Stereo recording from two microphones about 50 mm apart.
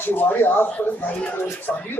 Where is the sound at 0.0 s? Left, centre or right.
Left.